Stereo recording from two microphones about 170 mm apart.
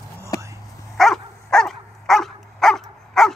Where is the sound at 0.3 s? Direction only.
20° left (ahead or behind).